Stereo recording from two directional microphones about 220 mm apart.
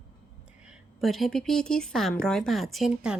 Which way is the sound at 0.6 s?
Centre (ahead or behind).